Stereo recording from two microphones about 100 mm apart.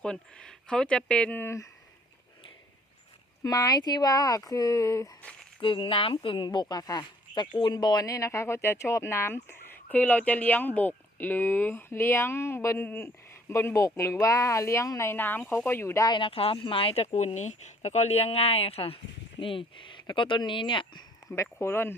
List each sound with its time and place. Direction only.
0.0 s speech: 10° left (ahead or behind)
1.4 s speech: 25° left (ahead or behind)
3.4 s speech: 40° left (ahead or behind)
5.2 s a sound: 10° left (ahead or behind)
5.5 s speech: 60° left (ahead or behind); by 16.0 s 25° left (ahead or behind)
16.0 s speech: 55° left (ahead or behind); by 18.9 s 75° left (ahead or behind)
19.4 s speech: 60° left (ahead or behind)
21.3 s speech: 25° left (ahead or behind)